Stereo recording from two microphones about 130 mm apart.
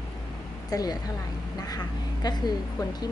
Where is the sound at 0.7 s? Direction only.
30° left (ahead or behind).